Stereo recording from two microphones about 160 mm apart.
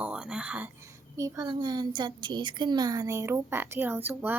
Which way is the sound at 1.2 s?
25° right (ahead or behind).